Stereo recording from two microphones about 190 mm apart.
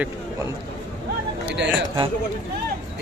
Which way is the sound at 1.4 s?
65° right (ahead or behind).